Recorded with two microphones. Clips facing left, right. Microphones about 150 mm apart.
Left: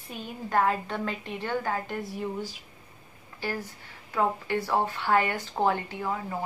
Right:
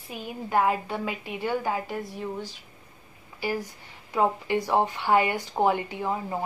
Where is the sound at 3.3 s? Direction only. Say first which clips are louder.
Right 4 dB; 10° right (ahead or behind).